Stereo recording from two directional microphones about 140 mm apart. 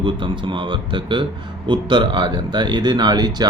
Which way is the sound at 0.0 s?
35° right (ahead or behind).